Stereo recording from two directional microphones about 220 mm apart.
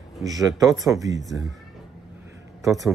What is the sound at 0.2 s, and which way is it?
Speech, 15° right (ahead or behind).